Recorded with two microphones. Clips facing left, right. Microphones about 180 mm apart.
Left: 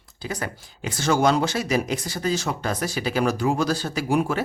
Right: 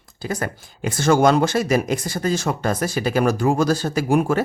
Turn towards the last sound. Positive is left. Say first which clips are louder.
# right 4 dB
turn(degrees=-50)  # may be behind; listen again after turning